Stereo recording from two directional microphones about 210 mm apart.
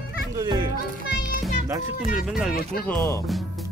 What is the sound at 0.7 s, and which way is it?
Children playing, 45° left (ahead or behind).